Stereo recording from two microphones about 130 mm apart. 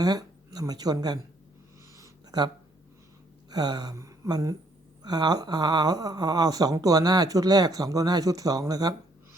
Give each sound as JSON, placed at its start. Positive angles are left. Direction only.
{"t": 0.0, "sound": "speech", "side_deg": -30}
{"t": 2.0, "sound": "a sound", "side_deg": -30}
{"t": 3.5, "sound": "gasp", "side_deg": -30}
{"t": 5.0, "sound": "speech", "side_deg": -30}